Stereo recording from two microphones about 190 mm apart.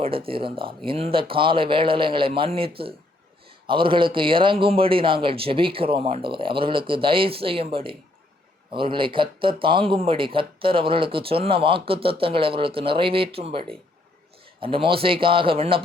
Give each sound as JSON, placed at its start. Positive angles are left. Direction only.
{"t": 0.0, "sound": "speech", "side_deg": -30}